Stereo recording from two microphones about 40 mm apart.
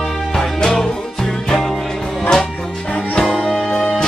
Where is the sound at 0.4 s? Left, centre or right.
Centre.